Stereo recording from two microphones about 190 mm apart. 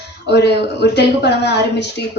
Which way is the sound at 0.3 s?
65° left (ahead or behind).